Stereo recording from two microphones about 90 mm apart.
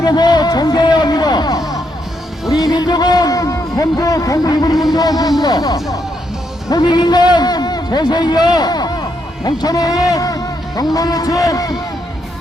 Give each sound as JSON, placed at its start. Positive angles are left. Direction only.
{"t": 0.0, "sound": "a man's voice", "side_deg": 50}